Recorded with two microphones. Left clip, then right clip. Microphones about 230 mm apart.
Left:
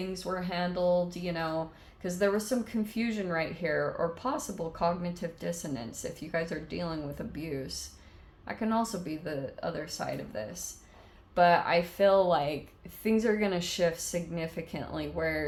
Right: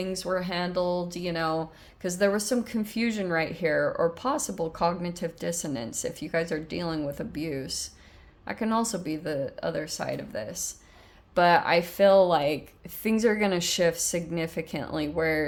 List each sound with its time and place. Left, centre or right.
0.0 s speech: right